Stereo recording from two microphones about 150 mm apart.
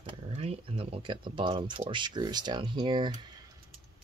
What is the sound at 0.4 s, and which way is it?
Speech, 40° right (ahead or behind).